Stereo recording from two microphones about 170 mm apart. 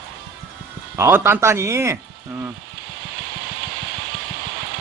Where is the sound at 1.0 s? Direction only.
15° right (ahead or behind).